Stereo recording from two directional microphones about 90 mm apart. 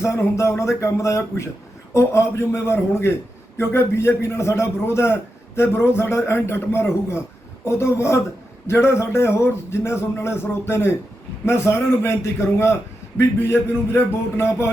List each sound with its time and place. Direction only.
0.0 s speech: 30° left (ahead or behind)